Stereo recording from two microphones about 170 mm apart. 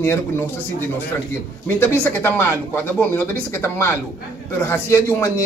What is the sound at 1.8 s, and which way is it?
A man's voice, 15° left (ahead or behind).